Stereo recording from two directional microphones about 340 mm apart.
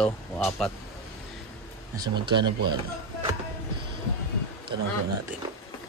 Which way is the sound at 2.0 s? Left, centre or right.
Centre.